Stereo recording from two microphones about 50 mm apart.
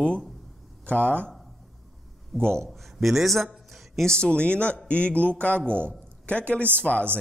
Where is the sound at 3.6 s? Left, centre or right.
Centre.